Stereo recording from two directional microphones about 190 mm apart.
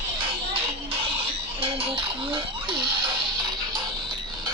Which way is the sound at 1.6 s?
30° right (ahead or behind).